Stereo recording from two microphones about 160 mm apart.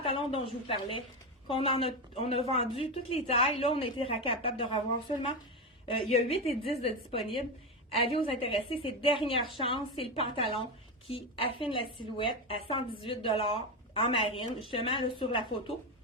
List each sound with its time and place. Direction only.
0.0 s a woman's voice: 35° left (ahead or behind)
5.9 s a woman's voice: 40° left (ahead or behind)